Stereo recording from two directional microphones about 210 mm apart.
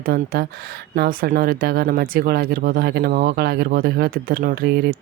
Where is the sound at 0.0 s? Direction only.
45° right (ahead or behind).